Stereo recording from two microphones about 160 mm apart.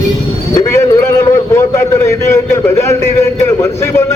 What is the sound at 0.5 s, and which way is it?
A man's voice, 20° left (ahead or behind).